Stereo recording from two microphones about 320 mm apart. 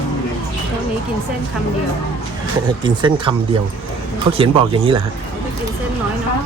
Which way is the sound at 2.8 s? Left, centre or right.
Centre.